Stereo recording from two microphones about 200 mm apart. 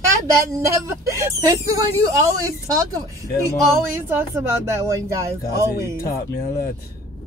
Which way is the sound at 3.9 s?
10° right (ahead or behind).